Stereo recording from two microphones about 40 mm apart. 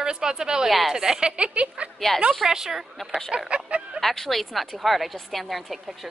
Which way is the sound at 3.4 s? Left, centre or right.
Right.